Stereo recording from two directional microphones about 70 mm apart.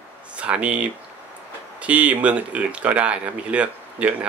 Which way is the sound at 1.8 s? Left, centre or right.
Centre.